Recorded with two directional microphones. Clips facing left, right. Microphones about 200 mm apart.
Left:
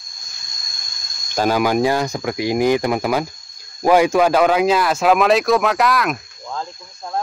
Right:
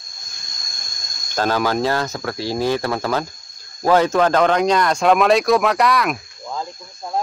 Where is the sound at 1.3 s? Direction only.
10° left (ahead or behind).